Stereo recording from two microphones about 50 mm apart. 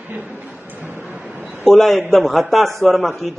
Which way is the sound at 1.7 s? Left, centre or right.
Centre.